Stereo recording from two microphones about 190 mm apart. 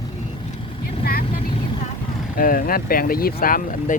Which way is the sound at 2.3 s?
50° left (ahead or behind).